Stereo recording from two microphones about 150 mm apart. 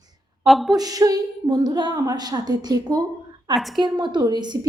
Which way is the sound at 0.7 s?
25° right (ahead or behind).